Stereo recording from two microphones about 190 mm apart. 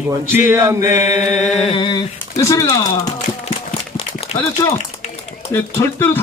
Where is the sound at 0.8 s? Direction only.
40° left (ahead or behind).